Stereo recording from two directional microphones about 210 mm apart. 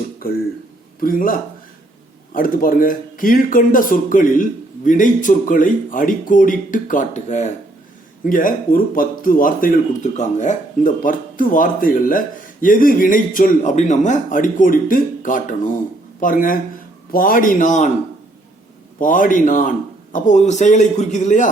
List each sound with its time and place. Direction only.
1.0 s speech: 40° left (ahead or behind)
18.9 s speech: 40° left (ahead or behind)